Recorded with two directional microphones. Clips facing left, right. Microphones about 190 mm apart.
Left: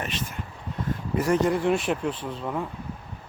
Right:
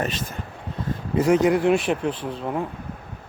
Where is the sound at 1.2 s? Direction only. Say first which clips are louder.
Right 5 dB; 15° right (ahead or behind).